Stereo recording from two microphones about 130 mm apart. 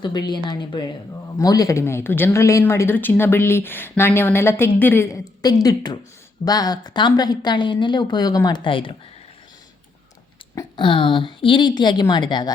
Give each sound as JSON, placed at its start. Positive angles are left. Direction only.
{"t": 0.0, "sound": "a woman's voice", "side_deg": 35}
{"t": 5.4, "sound": "a woman's voice", "side_deg": 30}
{"t": 10.8, "sound": "a woman's voice", "side_deg": 40}